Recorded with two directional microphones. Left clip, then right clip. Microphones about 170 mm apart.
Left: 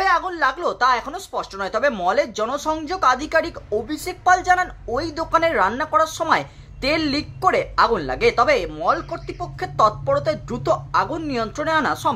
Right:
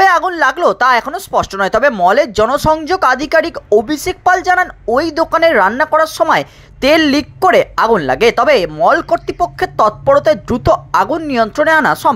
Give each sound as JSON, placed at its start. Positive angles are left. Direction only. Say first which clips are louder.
{"t": 0.0, "sound": "a woman's voice", "louder": "right 9 dB", "side_deg": -45}